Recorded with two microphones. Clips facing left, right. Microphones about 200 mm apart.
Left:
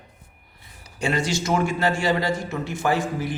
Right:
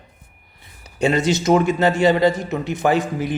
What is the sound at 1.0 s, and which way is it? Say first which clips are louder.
Speech: right 7 dB; 20° right (ahead or behind).